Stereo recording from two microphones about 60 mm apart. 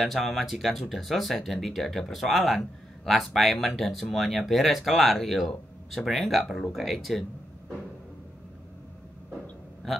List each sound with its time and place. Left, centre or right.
0.0 s speech: centre